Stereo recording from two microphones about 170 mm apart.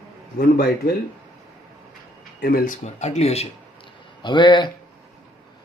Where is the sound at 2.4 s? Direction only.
60° left (ahead or behind).